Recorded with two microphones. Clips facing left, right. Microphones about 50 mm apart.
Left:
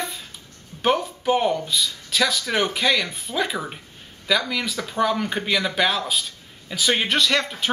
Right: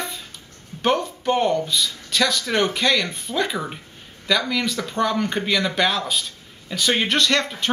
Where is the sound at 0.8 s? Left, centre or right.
Centre.